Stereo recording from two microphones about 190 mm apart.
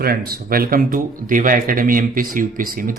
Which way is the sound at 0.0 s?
50° right (ahead or behind).